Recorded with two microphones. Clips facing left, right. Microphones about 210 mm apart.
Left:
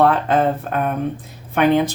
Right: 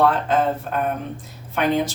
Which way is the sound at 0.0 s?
55° left (ahead or behind).